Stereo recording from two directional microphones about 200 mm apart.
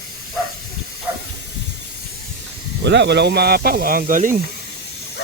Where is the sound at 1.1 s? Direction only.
10° right (ahead or behind).